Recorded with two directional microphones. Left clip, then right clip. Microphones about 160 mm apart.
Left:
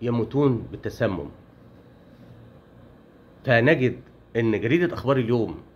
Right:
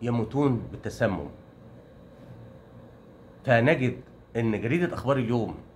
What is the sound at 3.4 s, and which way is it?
Speech, 30° left (ahead or behind).